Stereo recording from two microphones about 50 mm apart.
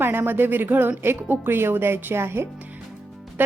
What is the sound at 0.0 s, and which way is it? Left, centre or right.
A woman's voice, right.